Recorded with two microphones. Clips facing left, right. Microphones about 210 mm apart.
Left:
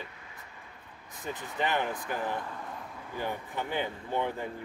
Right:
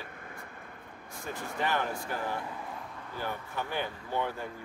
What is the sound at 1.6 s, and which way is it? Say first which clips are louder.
Speech: left 1 dB; 20° left (ahead or behind).